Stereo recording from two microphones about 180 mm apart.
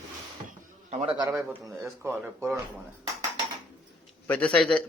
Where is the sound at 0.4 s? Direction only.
35° right (ahead or behind).